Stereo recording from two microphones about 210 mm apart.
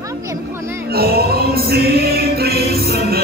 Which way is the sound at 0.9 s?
45° right (ahead or behind).